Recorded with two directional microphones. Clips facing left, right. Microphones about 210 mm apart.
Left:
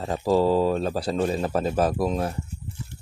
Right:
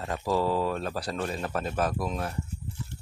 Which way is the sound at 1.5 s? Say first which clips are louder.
Left 6 dB; 35° left (ahead or behind).